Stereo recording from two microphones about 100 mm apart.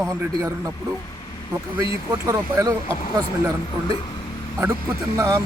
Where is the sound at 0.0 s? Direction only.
30° right (ahead or behind).